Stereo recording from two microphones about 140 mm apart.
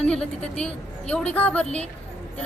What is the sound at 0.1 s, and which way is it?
Speech, 5° left (ahead or behind).